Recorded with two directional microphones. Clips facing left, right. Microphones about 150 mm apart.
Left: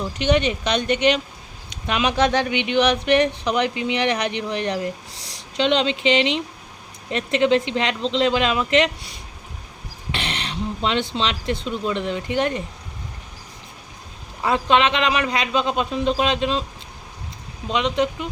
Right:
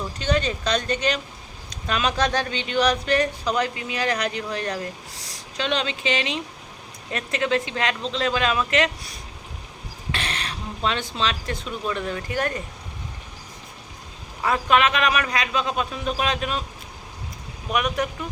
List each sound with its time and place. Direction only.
0.2 s speech: 25° left (ahead or behind)
1.9 s speech: 15° left (ahead or behind)
14.4 s speech: 25° left (ahead or behind)
17.7 s speech: 25° left (ahead or behind)